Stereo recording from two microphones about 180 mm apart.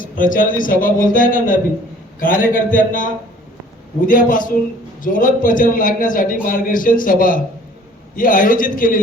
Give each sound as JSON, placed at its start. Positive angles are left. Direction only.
{"t": 0.0, "sound": "a man's voice", "side_deg": 50}